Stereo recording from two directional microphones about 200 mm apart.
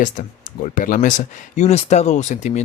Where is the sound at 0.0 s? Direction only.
40° left (ahead or behind).